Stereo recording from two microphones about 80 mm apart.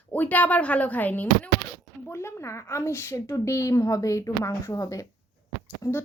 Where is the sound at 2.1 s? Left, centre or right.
Left.